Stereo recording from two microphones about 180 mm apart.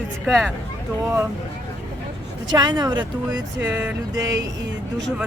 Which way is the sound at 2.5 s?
25° right (ahead or behind).